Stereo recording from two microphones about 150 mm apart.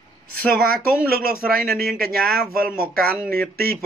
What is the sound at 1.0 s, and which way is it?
Speech, 75° right (ahead or behind).